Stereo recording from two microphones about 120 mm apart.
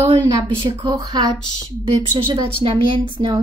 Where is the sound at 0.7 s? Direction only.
35° right (ahead or behind).